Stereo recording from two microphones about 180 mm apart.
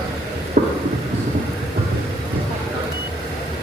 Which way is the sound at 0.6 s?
45° right (ahead or behind).